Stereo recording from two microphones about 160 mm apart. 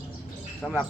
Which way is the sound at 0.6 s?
Centre (ahead or behind).